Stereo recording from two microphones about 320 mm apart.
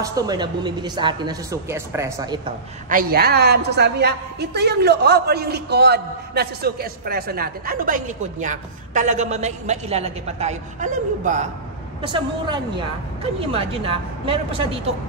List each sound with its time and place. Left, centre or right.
0.0 s speech: centre
2.9 s a woman's voice: right